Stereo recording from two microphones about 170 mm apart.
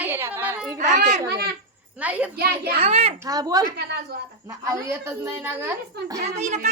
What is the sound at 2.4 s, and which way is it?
Speech, 65° right (ahead or behind).